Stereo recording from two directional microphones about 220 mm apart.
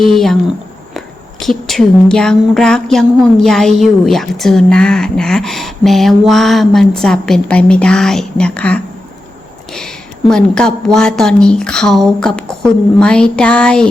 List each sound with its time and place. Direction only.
0.0 s speech: centre (ahead or behind)